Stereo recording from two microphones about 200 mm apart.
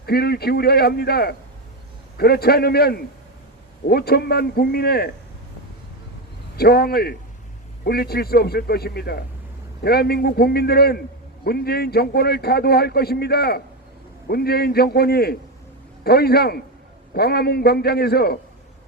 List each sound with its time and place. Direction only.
0.0 s speech: 50° left (ahead or behind)
6.6 s speech: 50° left (ahead or behind)